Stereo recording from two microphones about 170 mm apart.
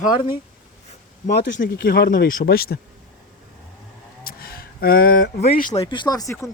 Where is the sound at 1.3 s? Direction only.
70° left (ahead or behind).